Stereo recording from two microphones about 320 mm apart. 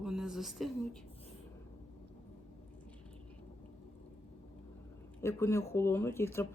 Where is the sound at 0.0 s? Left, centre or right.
Centre.